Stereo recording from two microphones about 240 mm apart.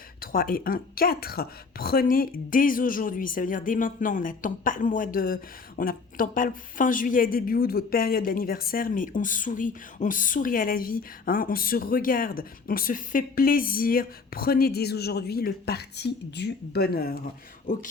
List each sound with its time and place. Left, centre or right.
0.2 s speech: left